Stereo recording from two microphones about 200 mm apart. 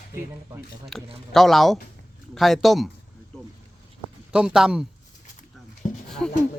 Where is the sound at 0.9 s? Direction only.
Centre (ahead or behind).